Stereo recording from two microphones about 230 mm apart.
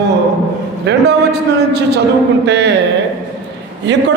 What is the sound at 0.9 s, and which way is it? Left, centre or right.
A man's voice, right.